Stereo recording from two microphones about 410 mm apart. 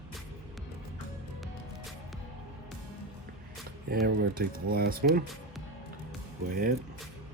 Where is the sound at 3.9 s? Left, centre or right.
Right.